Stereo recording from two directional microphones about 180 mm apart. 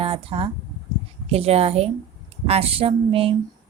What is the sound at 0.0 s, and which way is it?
A woman's voice, 30° right (ahead or behind).